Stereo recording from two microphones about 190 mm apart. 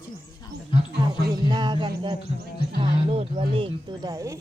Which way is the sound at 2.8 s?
30° right (ahead or behind).